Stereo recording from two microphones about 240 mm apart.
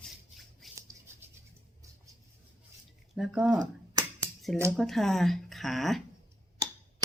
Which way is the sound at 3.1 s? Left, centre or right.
Centre.